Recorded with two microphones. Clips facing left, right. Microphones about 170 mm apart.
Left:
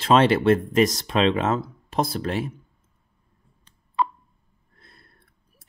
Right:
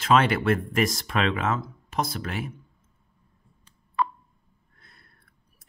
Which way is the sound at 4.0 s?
20° left (ahead or behind).